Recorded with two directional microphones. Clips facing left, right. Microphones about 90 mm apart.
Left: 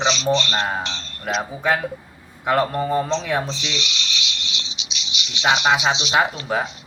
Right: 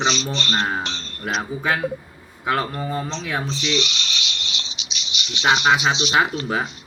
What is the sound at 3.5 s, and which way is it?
Cricket, 50° right (ahead or behind).